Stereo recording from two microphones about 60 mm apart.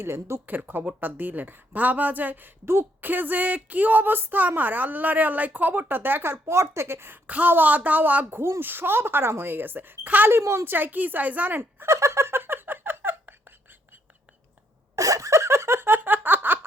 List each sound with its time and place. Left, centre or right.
0.0 s speech: right
0.4 s speech: right
7.3 s a woman's voice: right
8.4 s speech: right
10.2 s speech: right
10.7 s speech: right
11.9 s giggle: right
12.4 s a sound: right
14.9 s giggle: right